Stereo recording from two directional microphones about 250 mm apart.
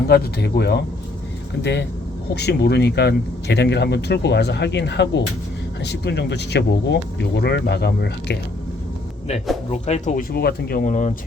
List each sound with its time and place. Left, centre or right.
0.1 s speech: left
9.7 s speech: left